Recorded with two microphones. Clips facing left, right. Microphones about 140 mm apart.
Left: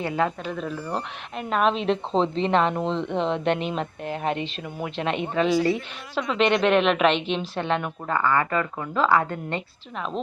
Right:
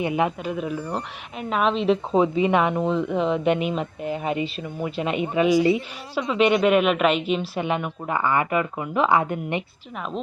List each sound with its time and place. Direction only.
0.0 s speech: 15° right (ahead or behind)